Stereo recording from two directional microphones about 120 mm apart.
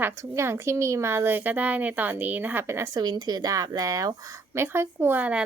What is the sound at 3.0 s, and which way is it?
Speech, 35° right (ahead or behind).